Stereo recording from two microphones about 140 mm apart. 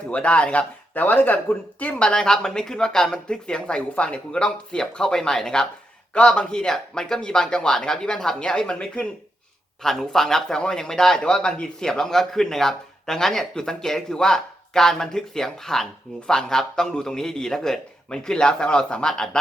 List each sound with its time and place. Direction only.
0.1 s speech: 10° left (ahead or behind)